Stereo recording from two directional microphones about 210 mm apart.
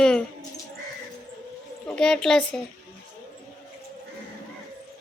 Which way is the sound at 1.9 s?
5° left (ahead or behind).